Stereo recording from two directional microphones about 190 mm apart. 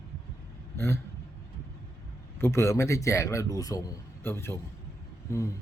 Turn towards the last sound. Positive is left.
turn(degrees=15)  # may be behind; listen again after turning